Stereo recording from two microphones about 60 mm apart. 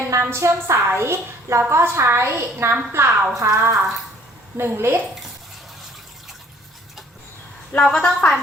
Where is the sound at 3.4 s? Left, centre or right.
Right.